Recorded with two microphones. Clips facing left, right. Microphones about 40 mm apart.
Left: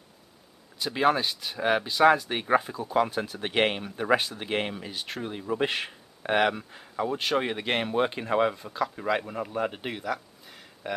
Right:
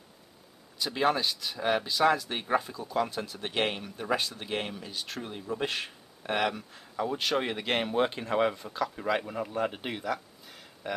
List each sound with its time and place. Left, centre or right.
0.7 s speech: centre
7.1 s speech: centre